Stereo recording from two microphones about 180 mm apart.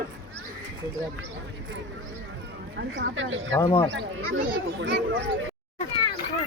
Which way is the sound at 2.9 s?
90° right.